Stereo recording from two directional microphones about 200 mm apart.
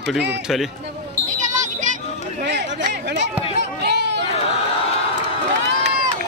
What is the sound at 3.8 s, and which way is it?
Chatter, 55° right (ahead or behind).